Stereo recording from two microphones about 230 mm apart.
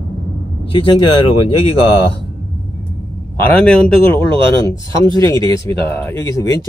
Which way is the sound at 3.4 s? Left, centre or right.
Centre.